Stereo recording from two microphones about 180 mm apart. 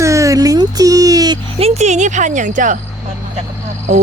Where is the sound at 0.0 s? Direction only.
15° right (ahead or behind).